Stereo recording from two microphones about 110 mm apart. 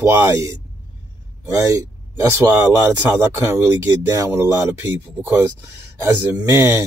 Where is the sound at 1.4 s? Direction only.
30° right (ahead or behind).